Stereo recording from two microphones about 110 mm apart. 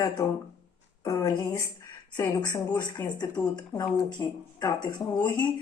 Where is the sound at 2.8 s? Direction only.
40° left (ahead or behind).